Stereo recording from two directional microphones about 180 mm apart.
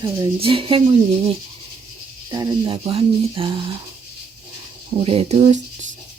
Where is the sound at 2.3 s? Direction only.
25° right (ahead or behind).